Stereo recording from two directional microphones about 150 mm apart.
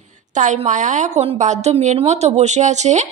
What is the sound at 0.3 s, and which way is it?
A woman's voice, 55° right (ahead or behind).